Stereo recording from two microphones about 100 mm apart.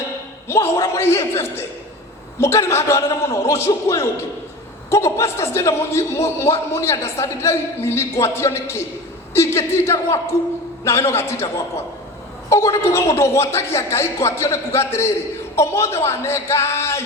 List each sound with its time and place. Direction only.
0.4 s a man's voice: 25° left (ahead or behind)